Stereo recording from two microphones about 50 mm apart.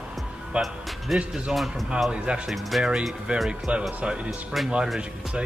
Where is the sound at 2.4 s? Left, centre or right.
Centre.